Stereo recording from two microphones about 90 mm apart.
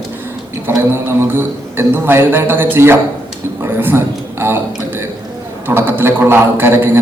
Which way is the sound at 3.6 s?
25° right (ahead or behind).